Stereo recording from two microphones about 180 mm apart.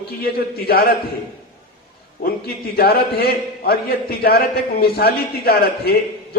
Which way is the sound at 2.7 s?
60° left (ahead or behind).